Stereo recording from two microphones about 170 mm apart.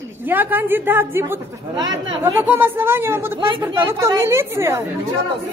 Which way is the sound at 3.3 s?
30° right (ahead or behind).